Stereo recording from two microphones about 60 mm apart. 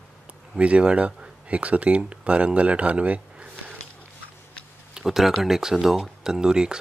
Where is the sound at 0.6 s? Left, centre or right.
Centre.